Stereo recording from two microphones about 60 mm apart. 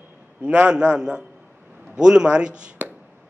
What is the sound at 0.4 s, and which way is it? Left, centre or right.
A man's voice, centre.